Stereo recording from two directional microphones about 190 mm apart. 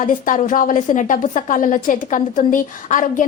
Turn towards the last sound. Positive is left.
turn(degrees=45)  # may be behind; listen again after turning